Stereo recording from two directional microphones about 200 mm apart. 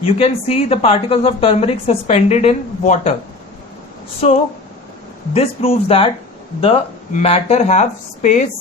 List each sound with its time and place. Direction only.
0.0 s a woman's voice: 30° left (ahead or behind)
4.2 s a woman's voice: 35° left (ahead or behind)